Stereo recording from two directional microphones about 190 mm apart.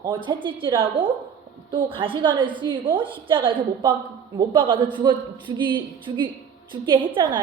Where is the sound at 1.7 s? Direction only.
25° right (ahead or behind).